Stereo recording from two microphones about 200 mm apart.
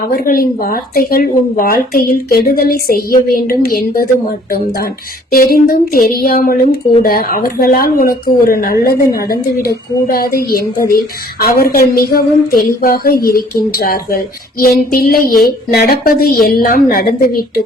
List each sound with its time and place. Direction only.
0.1 s speech: 45° left (ahead or behind)